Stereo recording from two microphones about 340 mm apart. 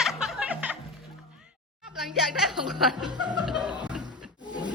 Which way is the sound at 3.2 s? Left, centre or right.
Centre.